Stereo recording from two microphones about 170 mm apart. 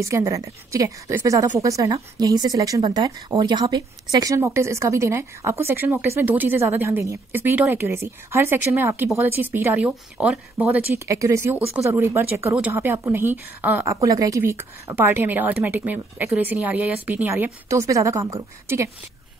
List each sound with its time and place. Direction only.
0.0 s a woman's voice: 20° right (ahead or behind)